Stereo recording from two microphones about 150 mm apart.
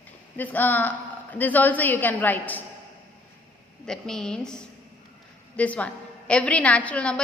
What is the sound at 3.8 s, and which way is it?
Speech, 5° left (ahead or behind).